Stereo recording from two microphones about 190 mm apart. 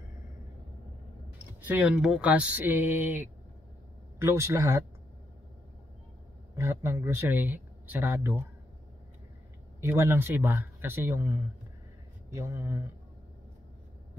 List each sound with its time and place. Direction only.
1.6 s speech: 10° right (ahead or behind)
6.5 s speech: 15° right (ahead or behind)
9.8 s speech: 15° right (ahead or behind)